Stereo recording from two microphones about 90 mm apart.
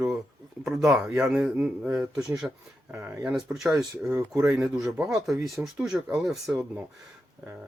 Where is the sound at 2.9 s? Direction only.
25° right (ahead or behind).